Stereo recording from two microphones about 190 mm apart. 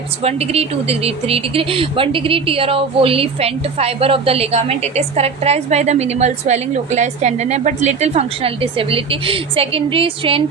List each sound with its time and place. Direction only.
0.2 s a woman's voice: 30° right (ahead or behind)